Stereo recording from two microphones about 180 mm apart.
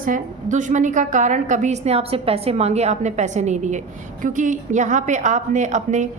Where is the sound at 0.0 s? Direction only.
45° right (ahead or behind).